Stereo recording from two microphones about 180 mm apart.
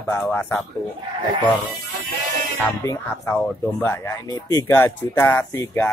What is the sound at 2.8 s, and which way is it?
Speech, 15° left (ahead or behind).